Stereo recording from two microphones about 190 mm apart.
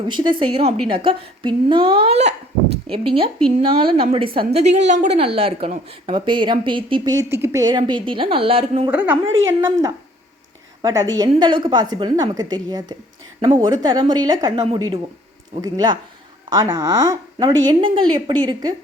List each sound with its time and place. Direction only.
0.1 s a woman's voice: 25° right (ahead or behind)
8.9 s a woman's voice: 10° right (ahead or behind); by 18.7 s 25° right (ahead or behind)